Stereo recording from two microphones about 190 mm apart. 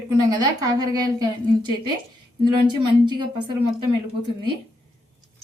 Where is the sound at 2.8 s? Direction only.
25° right (ahead or behind).